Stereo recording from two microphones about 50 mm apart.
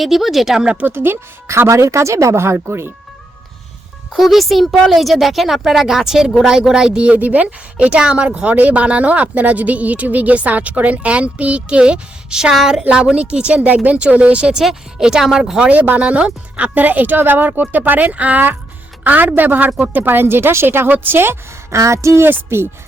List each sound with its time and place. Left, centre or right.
0.0 s speech: centre
0.6 s speech: right
0.9 s a woman's voice: right
4.1 s speech: centre; by 14.6 s right
14.6 s speech: centre
15.6 s a woman's voice: right
21.7 s a woman's voice: right
22.4 s a woman's voice: right